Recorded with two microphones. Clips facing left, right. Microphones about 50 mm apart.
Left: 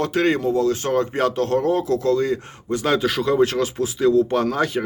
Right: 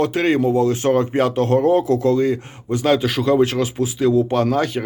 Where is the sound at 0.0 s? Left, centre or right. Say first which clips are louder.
Right 2 dB; centre.